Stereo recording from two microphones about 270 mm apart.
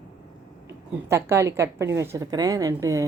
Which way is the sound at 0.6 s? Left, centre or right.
Centre.